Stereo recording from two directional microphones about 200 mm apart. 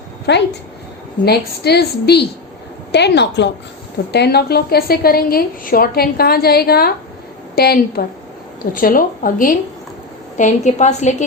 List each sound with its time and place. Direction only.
0.3 s a woman's voice: 60° left (ahead or behind); by 11.1 s 35° left (ahead or behind)